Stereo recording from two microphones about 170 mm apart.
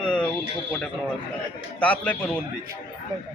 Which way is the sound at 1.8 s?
10° left (ahead or behind).